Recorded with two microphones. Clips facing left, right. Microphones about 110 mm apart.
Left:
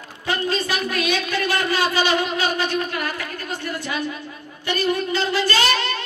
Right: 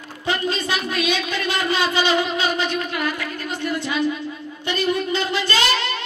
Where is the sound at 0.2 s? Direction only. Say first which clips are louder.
Even; 25° right (ahead or behind).